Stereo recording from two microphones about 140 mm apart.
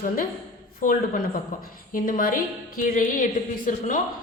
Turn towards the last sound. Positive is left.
turn(degrees=65)  # may be behind; listen again after turning